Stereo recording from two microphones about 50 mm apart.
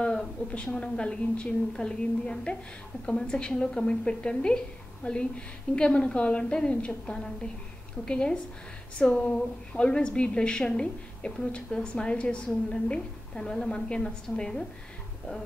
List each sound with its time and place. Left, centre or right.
0.4 s a woman's voice: left
0.7 s a woman's voice: centre